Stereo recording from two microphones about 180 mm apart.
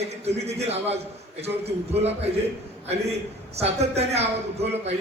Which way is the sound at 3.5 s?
35° right (ahead or behind).